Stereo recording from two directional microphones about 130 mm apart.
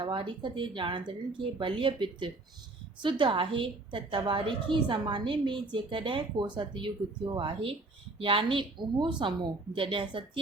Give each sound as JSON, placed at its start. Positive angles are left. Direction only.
{"t": 0.0, "sound": "a woman's voice", "side_deg": -40}